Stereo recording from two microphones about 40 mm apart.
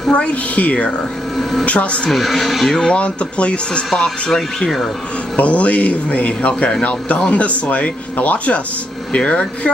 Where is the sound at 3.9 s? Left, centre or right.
Centre.